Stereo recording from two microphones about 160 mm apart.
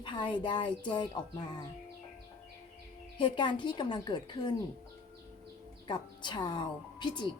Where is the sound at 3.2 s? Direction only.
30° left (ahead or behind).